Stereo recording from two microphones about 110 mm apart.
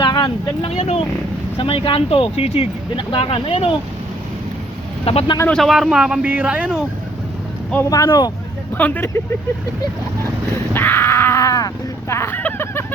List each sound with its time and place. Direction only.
0.0 s vehicle: 45° left (ahead or behind)
0.6 s speech: 80° left
1.5 s speech: 55° left (ahead or behind)
5.1 s speech: 65° left (ahead or behind)
5.5 s speech: centre (ahead or behind)
7.9 s speech: 30° left (ahead or behind)
8.7 s speech: 15° left (ahead or behind)
10.8 s a sound: 20° left (ahead or behind)